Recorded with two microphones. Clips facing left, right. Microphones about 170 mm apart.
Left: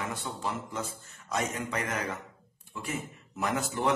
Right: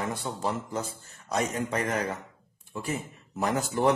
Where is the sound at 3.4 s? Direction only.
35° right (ahead or behind).